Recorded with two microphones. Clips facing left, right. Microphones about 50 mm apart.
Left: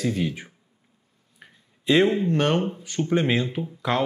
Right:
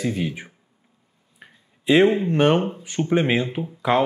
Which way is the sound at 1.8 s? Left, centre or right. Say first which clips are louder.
Right 3 dB; centre.